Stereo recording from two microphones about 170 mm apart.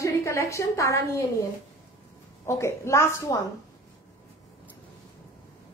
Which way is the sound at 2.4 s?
15° left (ahead or behind).